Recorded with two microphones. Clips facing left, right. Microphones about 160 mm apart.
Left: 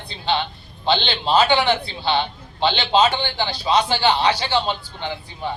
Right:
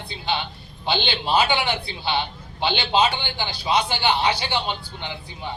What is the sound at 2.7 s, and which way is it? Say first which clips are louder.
A man's voice: left 2 dB; 15° right (ahead or behind).